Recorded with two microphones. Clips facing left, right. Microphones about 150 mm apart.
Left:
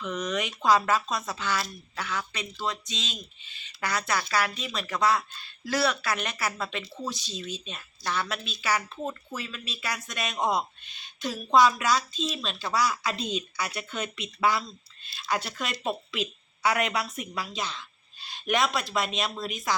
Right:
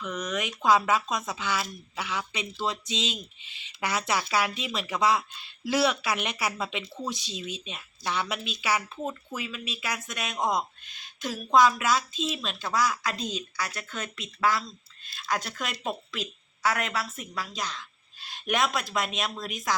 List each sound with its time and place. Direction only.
0.0 s speech: centre (ahead or behind)